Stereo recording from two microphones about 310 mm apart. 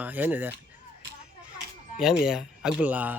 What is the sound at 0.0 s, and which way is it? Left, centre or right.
Speech, centre.